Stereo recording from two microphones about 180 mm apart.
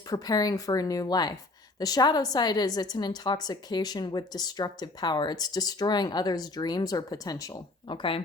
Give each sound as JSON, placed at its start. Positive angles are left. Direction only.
{"t": 0.1, "sound": "a woman's voice", "side_deg": 20}